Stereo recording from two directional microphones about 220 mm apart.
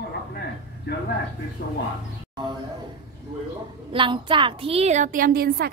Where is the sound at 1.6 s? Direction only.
45° left (ahead or behind).